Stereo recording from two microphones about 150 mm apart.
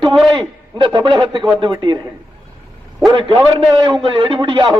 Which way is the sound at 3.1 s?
35° right (ahead or behind).